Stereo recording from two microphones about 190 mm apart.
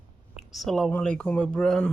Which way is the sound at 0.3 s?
Centre (ahead or behind).